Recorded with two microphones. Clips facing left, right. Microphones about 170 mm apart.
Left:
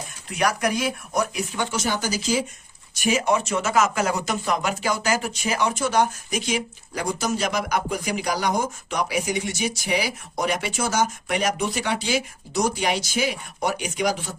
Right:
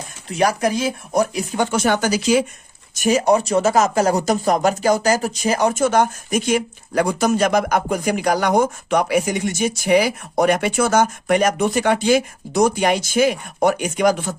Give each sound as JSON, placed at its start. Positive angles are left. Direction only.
{"t": 0.3, "sound": "speech", "side_deg": -30}
{"t": 2.9, "sound": "speech", "side_deg": -40}